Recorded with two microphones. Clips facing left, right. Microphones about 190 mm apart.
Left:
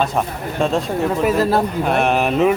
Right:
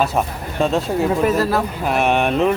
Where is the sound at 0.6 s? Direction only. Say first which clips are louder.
Right 1 dB; centre (ahead or behind).